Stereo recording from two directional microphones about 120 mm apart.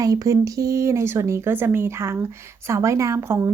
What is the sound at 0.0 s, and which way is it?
A woman's voice, 30° right (ahead or behind).